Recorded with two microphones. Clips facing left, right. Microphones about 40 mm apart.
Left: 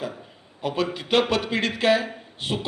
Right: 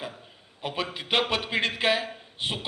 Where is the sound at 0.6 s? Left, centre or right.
Right.